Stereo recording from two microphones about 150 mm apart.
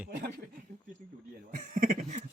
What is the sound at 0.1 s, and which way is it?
Speech, 90° right.